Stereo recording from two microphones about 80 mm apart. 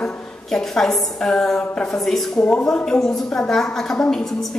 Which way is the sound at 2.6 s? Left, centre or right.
Centre.